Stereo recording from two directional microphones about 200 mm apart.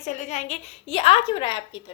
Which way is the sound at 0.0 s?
35° left (ahead or behind).